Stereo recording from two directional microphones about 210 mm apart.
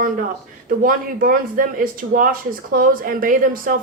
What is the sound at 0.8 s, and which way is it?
A woman's voice, 40° right (ahead or behind).